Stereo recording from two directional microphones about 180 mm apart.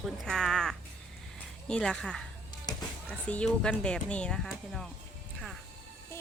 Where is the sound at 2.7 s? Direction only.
20° left (ahead or behind).